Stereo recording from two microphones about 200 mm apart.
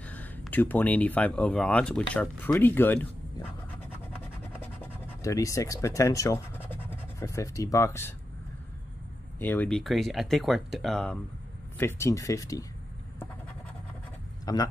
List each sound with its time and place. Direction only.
0.0 s speech: 10° left (ahead or behind)
4.6 s scratch: 15° left (ahead or behind)
9.4 s speech: 10° left (ahead or behind)
11.8 s speech: 15° left (ahead or behind)
14.4 s a man's voice: 20° left (ahead or behind)